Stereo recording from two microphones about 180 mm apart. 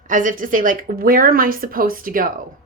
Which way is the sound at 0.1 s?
45° right (ahead or behind).